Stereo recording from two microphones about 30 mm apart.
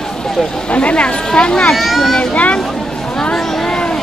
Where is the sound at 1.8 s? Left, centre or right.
Centre.